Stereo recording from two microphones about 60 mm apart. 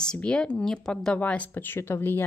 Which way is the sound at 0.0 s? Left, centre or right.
Centre.